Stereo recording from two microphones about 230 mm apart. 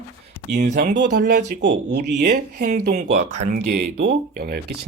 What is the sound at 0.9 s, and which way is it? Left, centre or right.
Speech, right.